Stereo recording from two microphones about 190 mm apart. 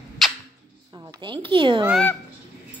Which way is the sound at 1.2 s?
25° right (ahead or behind).